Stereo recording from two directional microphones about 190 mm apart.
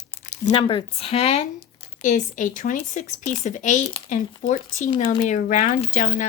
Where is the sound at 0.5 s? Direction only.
25° left (ahead or behind).